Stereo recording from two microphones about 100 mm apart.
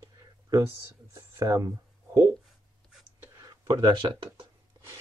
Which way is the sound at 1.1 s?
30° right (ahead or behind).